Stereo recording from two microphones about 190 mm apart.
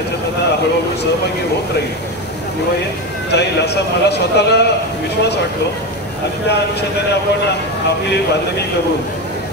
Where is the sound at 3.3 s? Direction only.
60° left (ahead or behind).